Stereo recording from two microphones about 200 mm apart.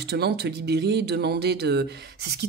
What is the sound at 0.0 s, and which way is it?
Speech, 55° right (ahead or behind).